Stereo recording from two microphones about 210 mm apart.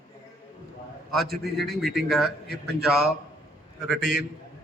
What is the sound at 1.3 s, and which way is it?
A man's voice, centre (ahead or behind).